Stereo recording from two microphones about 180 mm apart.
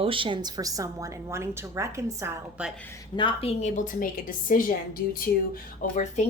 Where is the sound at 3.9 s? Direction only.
50° left (ahead or behind).